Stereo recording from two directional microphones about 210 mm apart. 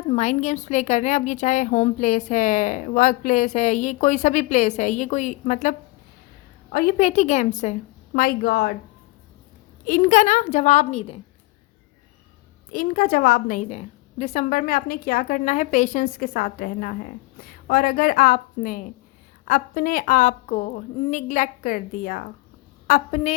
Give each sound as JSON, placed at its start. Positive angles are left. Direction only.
{"t": 0.1, "sound": "a woman's voice", "side_deg": 30}
{"t": 9.8, "sound": "a woman's voice", "side_deg": 35}
{"t": 12.7, "sound": "a woman's voice", "side_deg": 40}
{"t": 22.9, "sound": "a woman's voice", "side_deg": 35}